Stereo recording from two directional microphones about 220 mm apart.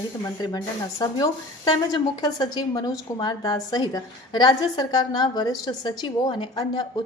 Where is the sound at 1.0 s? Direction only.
20° left (ahead or behind).